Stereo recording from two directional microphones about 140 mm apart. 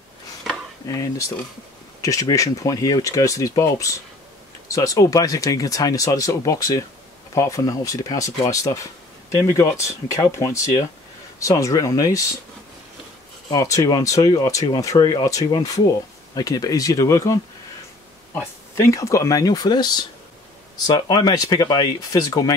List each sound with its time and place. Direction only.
0.8 s speech: 25° left (ahead or behind)
2.0 s a sound: 25° left (ahead or behind)
2.2 s speech: 25° left (ahead or behind)
13.5 s speech: 25° left (ahead or behind)